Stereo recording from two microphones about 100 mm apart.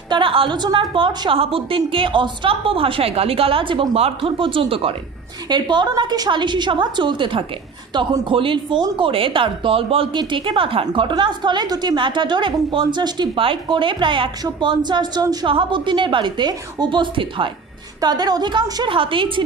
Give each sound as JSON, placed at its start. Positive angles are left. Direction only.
{"t": 0.1, "sound": "a woman's voice", "side_deg": -60}
{"t": 5.5, "sound": "a woman's voice", "side_deg": -50}
{"t": 13.4, "sound": "a woman's voice", "side_deg": -60}
{"t": 15.4, "sound": "a woman's voice", "side_deg": -55}
{"t": 18.0, "sound": "a woman's voice", "side_deg": -45}